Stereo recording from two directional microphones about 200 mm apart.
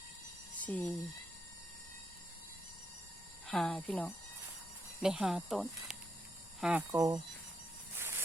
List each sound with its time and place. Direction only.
0.6 s speech: 5° left (ahead or behind)
3.4 s speech: centre (ahead or behind)
6.9 s speech: 15° right (ahead or behind)
7.9 s a sound: 10° right (ahead or behind)